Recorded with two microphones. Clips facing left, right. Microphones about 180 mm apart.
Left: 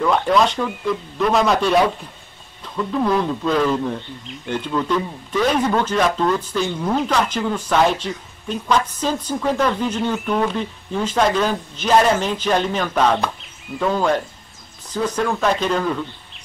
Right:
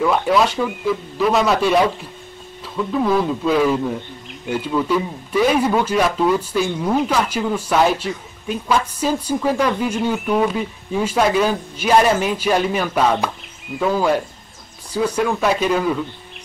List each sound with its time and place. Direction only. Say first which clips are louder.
0.0 s speech: even; 5° right (ahead or behind)